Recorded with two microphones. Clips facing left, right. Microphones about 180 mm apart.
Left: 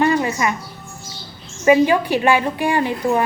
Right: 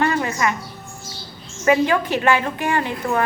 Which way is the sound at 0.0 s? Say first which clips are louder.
Left 3 dB; 15° left (ahead or behind).